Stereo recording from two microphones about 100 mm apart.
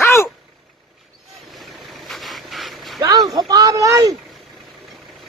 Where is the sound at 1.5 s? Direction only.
Centre (ahead or behind).